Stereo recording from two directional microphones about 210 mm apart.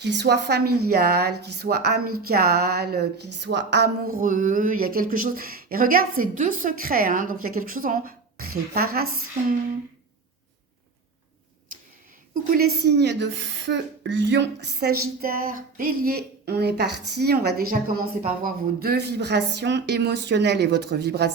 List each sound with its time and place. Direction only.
0.0 s speech: 55° right (ahead or behind)
12.3 s a woman's voice: 45° right (ahead or behind)